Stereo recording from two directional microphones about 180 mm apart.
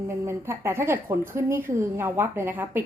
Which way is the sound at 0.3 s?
15° right (ahead or behind).